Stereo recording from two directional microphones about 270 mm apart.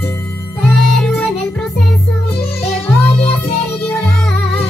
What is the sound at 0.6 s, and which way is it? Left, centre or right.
Music, centre.